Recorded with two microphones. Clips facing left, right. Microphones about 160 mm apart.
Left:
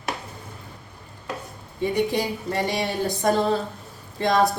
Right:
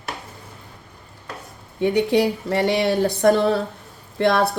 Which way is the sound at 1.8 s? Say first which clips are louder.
Right 5 dB; 70° right (ahead or behind).